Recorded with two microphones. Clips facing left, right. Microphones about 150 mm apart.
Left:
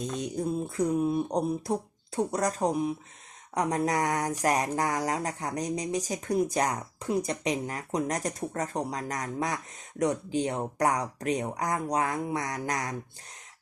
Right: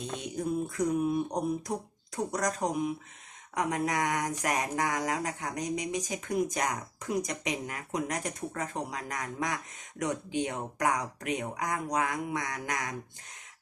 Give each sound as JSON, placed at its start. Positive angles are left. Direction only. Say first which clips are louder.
{"t": 0.0, "sound": "speech", "louder": "left 3 dB", "side_deg": 40}